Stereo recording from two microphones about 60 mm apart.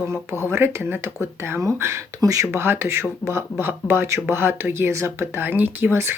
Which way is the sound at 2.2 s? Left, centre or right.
Right.